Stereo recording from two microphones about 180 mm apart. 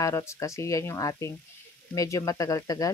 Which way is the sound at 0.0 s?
15° left (ahead or behind).